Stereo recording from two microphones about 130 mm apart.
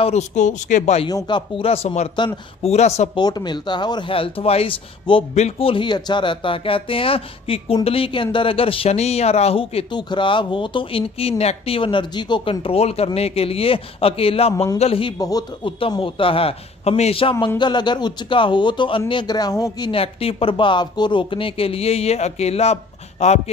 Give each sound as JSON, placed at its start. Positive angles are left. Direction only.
{"t": 0.0, "sound": "speech", "side_deg": 60}
{"t": 1.0, "sound": "speech", "side_deg": 30}
{"t": 1.6, "sound": "speech", "side_deg": 45}
{"t": 2.7, "sound": "speech", "side_deg": 60}
{"t": 3.2, "sound": "speech", "side_deg": 30}
{"t": 5.3, "sound": "speech", "side_deg": 50}
{"t": 9.9, "sound": "speech", "side_deg": 35}
{"t": 15.1, "sound": "speech", "side_deg": 30}
{"t": 15.6, "sound": "speech", "side_deg": 40}
{"t": 19.9, "sound": "speech", "side_deg": 45}